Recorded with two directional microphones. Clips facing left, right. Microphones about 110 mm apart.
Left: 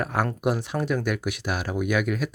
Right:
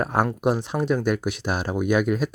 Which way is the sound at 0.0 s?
30° right (ahead or behind).